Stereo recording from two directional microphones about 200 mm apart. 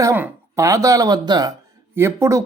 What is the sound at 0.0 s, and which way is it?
Speech, 15° right (ahead or behind).